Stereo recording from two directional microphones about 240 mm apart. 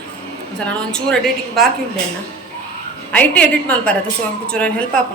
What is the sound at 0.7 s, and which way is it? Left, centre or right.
Speech, centre.